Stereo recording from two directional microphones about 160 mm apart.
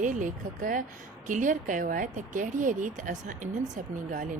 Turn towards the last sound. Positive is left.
turn(degrees=-50)  # may be behind; listen again after turning